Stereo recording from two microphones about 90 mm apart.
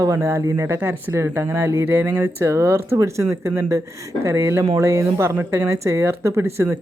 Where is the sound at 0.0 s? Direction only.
35° right (ahead or behind).